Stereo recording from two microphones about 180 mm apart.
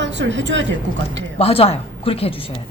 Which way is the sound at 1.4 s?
35° left (ahead or behind).